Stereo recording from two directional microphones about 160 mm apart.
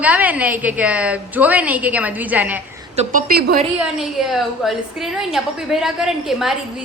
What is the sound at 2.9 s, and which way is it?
Speech, 50° right (ahead or behind).